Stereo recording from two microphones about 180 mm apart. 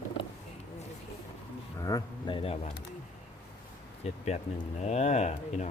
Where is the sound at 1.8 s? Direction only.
20° left (ahead or behind).